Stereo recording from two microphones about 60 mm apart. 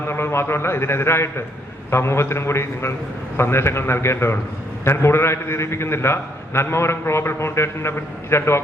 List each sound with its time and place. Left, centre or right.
0.1 s a man's voice: left